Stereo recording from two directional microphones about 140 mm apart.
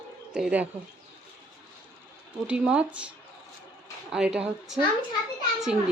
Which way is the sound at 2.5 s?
10° right (ahead or behind).